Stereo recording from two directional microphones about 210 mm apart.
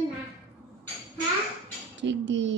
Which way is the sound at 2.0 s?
60° right (ahead or behind).